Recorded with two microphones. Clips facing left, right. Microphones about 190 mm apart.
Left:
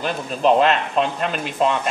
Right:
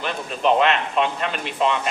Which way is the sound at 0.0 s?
35° left (ahead or behind).